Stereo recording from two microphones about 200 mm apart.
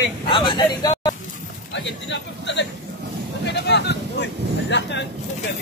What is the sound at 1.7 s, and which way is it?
Speech, 65° left (ahead or behind).